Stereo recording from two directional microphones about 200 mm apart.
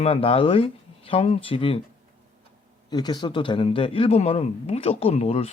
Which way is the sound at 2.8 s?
20° left (ahead or behind).